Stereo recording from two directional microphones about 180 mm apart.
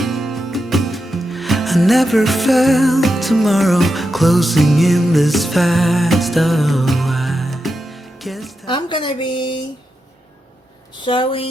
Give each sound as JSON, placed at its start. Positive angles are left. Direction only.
{"t": 0.0, "sound": "music", "side_deg": 0}
{"t": 8.6, "sound": "a woman's voice", "side_deg": 25}
{"t": 11.0, "sound": "a woman's voice", "side_deg": 30}